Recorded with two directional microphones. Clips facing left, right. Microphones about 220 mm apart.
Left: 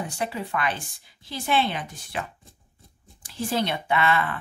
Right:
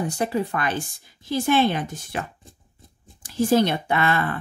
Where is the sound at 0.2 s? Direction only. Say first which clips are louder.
Right 3 dB; 45° right (ahead or behind).